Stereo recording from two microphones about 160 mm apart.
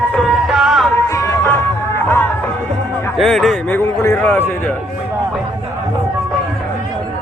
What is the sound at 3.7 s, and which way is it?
A man's voice, 15° left (ahead or behind).